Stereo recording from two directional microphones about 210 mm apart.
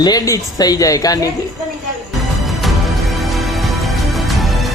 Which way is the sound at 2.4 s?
Centre (ahead or behind).